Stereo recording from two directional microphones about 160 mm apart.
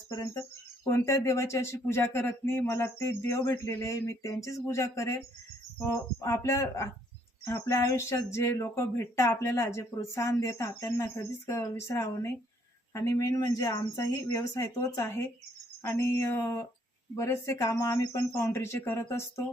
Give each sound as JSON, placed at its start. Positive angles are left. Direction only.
{"t": 0.1, "sound": "speech", "side_deg": 20}